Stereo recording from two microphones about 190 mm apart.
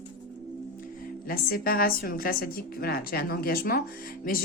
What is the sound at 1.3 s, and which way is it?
A woman's voice, 50° left (ahead or behind).